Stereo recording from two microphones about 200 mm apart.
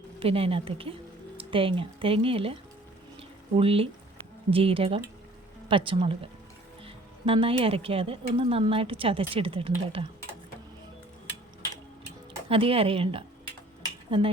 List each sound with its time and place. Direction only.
0.2 s speech: 30° right (ahead or behind)
3.2 s a sound: 30° right (ahead or behind)
4.5 s speech: 30° right (ahead or behind)
12.5 s speech: 30° right (ahead or behind)